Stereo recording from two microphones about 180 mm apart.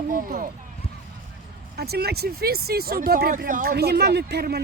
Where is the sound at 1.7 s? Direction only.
60° right (ahead or behind).